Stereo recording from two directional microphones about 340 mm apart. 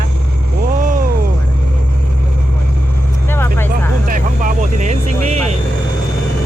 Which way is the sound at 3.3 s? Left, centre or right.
Centre.